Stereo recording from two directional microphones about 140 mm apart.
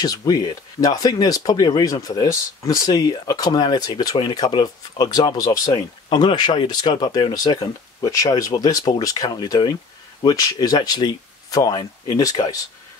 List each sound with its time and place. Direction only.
0.0 s speech: 25° left (ahead or behind)